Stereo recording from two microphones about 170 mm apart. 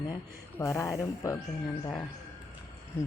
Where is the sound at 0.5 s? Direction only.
15° left (ahead or behind).